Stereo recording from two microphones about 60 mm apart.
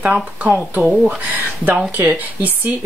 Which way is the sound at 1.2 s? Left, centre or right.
Right.